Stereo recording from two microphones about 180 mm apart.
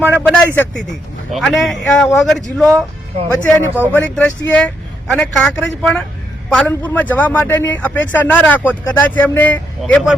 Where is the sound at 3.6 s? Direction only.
10° right (ahead or behind).